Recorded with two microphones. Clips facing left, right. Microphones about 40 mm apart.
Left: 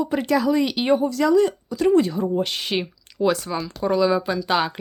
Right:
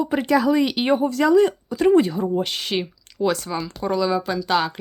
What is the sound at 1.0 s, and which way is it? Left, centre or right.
Speech, right.